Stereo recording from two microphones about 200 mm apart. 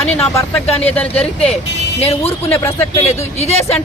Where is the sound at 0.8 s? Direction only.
5° left (ahead or behind).